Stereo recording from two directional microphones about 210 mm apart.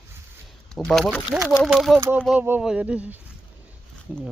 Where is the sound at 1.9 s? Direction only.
10° right (ahead or behind).